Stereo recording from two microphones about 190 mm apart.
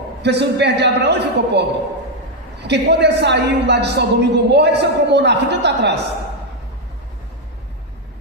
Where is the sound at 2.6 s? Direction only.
60° right (ahead or behind).